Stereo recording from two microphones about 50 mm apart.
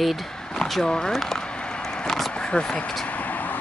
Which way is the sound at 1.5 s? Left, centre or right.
Left.